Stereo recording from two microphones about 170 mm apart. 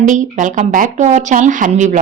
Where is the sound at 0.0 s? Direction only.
50° right (ahead or behind).